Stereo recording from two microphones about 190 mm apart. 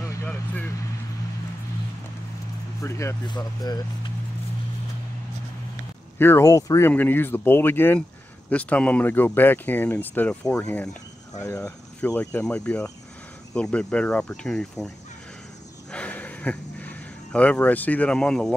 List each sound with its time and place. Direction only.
0.1 s vehicle: 10° left (ahead or behind)
2.8 s speech: 15° left (ahead or behind)
6.1 s speech: 10° left (ahead or behind)
15.9 s a sound: 5° left (ahead or behind)